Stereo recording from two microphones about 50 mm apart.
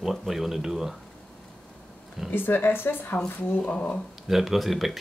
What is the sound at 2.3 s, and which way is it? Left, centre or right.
Speech, left.